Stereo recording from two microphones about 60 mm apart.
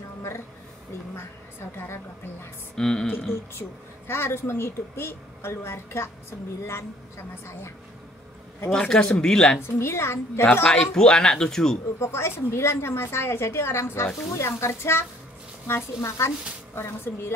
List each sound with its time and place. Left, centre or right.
2.7 s speech: centre
4.1 s a woman's voice: left
8.6 s speech: centre
9.6 s a woman's voice: left
10.4 s a man's voice: left
10.7 s speech: centre
12.0 s a woman's voice: left